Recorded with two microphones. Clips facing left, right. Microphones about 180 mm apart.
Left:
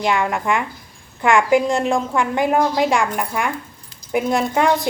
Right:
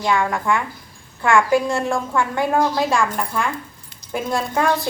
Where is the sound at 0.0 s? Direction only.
20° left (ahead or behind).